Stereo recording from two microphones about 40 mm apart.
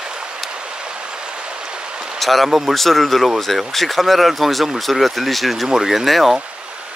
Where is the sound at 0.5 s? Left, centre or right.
Right.